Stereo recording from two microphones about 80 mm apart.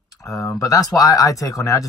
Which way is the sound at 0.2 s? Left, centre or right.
Left.